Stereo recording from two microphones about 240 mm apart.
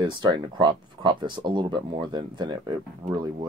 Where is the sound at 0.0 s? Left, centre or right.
Centre.